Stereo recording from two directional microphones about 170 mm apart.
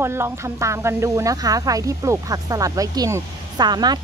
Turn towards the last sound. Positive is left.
turn(degrees=-25)  # may be behind; listen again after turning